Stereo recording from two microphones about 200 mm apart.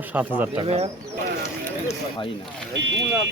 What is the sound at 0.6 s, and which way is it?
Speech, 30° right (ahead or behind).